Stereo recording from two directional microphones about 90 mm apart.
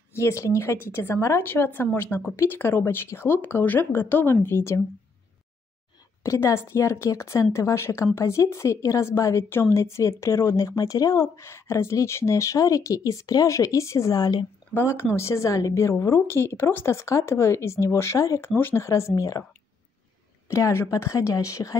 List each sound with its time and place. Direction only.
0.1 s a woman's voice: 35° left (ahead or behind)
6.2 s speech: 30° left (ahead or behind)
14.7 s speech: 25° left (ahead or behind)
18.5 s a woman's voice: 25° left (ahead or behind)
18.9 s speech: 35° left (ahead or behind)
20.4 s a woman's voice: 35° left (ahead or behind)